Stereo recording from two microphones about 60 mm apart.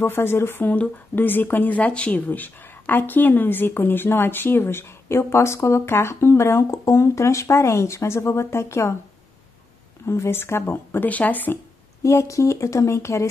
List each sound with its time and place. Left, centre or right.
0.0 s speech: left
10.0 s speech: left
11.1 s speech: left
12.0 s speech: left